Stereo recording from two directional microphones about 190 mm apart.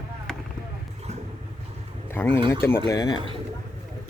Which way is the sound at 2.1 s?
10° left (ahead or behind).